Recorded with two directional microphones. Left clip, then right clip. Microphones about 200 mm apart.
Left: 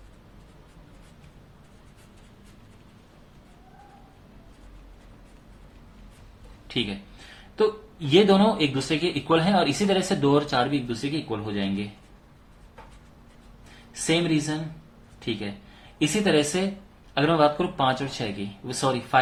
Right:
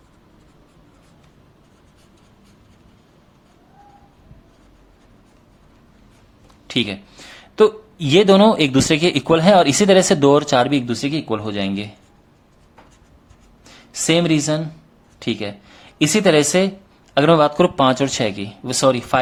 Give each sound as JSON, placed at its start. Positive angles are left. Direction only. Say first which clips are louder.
{"t": 7.5, "sound": "speech", "louder": "right 9 dB", "side_deg": -55}
{"t": 14.1, "sound": "speech", "louder": "right 7 dB", "side_deg": -55}
{"t": 16.0, "sound": "speech", "louder": "right 8 dB", "side_deg": -55}